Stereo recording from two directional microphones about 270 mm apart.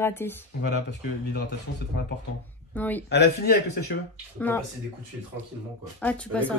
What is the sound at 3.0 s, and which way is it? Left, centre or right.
Speech, left.